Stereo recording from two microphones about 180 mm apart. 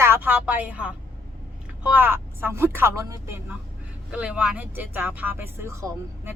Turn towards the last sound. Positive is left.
turn(degrees=-15)  # may be behind; listen again after turning